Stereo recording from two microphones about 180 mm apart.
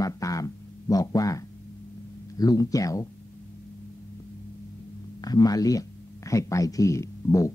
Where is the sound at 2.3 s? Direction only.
20° left (ahead or behind).